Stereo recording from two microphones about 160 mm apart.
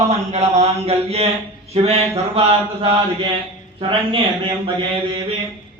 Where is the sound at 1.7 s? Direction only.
40° right (ahead or behind).